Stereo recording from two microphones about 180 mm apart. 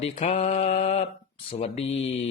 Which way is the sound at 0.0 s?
30° left (ahead or behind).